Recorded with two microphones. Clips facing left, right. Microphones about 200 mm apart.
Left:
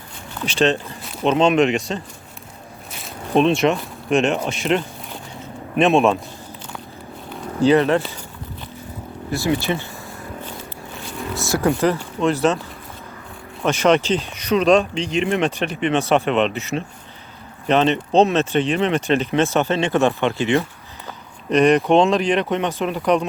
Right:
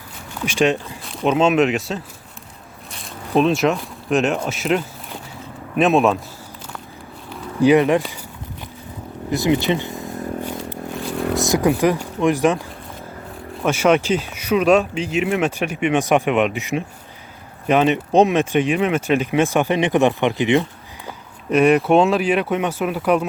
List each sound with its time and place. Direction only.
0.4 s speech: 10° right (ahead or behind)
2.9 s zipper: centre (ahead or behind)
4.4 s speech: 5° right (ahead or behind)
7.6 s speech: 15° right (ahead or behind)
9.3 s vehicle: 20° right (ahead or behind)
11.1 s zipper: 55° right (ahead or behind)
11.4 s speech: 15° right (ahead or behind)
13.7 s speech: 10° right (ahead or behind)